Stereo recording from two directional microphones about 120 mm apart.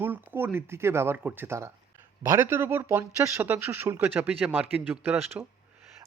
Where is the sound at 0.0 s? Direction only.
15° right (ahead or behind).